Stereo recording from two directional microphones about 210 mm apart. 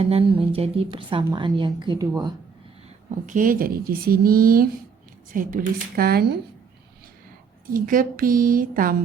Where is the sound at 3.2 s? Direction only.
40° right (ahead or behind).